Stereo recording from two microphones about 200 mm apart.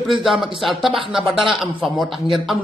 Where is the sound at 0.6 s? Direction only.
Centre (ahead or behind).